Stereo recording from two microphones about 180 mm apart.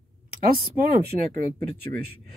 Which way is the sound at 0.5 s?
55° right (ahead or behind).